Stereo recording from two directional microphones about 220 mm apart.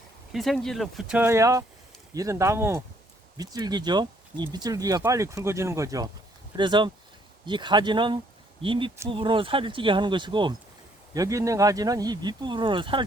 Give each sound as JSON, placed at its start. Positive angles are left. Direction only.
{"t": 0.3, "sound": "speech", "side_deg": 0}